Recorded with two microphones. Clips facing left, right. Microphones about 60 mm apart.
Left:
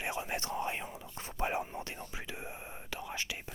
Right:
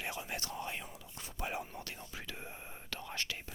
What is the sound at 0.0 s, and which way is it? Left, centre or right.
Whispering, left.